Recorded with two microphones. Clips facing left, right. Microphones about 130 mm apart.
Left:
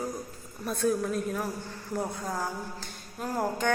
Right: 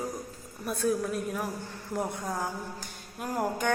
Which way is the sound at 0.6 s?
5° right (ahead or behind).